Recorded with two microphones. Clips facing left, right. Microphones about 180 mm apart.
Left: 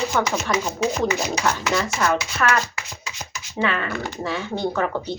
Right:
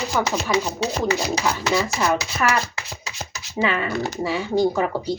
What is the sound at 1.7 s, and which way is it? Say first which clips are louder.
Speech: right 1 dB; 10° right (ahead or behind).